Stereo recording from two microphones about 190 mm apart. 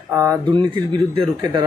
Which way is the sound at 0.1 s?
15° right (ahead or behind).